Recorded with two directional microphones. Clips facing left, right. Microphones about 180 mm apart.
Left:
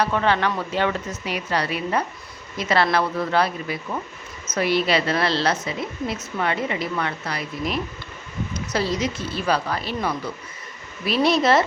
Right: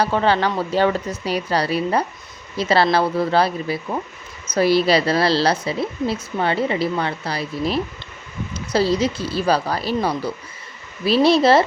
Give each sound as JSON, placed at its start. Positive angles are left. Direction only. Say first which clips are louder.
{"t": 0.0, "sound": "a woman's voice", "louder": "right 3 dB", "side_deg": -30}